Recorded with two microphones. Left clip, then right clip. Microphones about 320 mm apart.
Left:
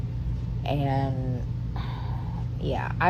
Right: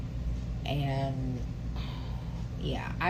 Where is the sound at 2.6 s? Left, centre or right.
Centre.